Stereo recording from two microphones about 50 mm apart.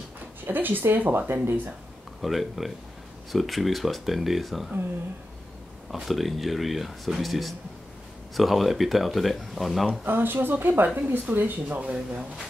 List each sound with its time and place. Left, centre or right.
0.5 s speech: right
2.2 s speech: centre
6.0 s speech: centre
10.0 s a woman's voice: right
11.8 s speech: right